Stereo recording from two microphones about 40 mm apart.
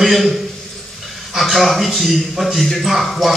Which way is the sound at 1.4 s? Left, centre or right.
Centre.